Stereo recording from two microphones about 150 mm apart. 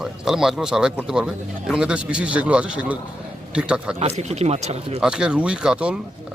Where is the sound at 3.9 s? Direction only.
45° right (ahead or behind).